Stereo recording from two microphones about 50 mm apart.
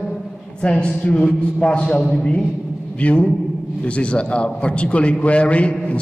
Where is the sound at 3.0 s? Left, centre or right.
Left.